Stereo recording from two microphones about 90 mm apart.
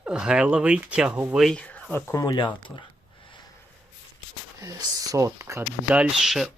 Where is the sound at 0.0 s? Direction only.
10° right (ahead or behind).